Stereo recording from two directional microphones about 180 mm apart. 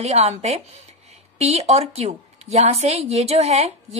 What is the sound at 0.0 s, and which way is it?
A woman's voice, 35° right (ahead or behind).